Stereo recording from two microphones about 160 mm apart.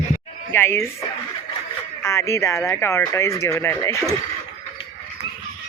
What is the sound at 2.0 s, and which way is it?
Speech, 20° left (ahead or behind).